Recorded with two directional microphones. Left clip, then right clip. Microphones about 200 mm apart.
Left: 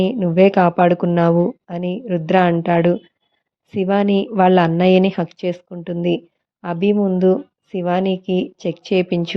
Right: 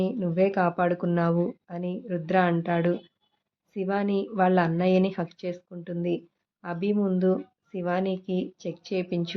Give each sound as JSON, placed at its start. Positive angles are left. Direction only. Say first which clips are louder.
{"t": 0.0, "sound": "speech", "louder": "left 11 dB", "side_deg": 35}